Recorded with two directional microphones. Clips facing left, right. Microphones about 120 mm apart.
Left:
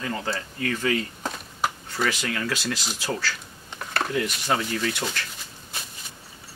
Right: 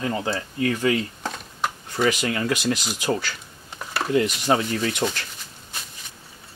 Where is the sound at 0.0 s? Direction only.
20° right (ahead or behind).